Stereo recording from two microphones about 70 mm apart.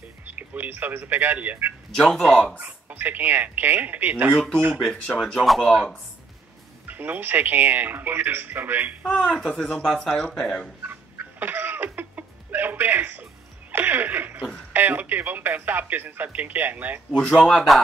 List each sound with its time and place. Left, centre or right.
0.2 s speech: right
2.0 s speech: centre
2.6 s speech: right
4.8 s speech: centre
6.9 s speech: right
9.1 s speech: centre
10.8 s fowl: right
14.7 s speech: right
17.1 s speech: centre